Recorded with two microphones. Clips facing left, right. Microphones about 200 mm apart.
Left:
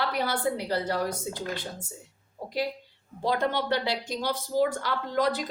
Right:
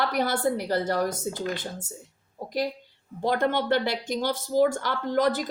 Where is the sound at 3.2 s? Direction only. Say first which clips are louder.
Right 2 dB; 50° right (ahead or behind).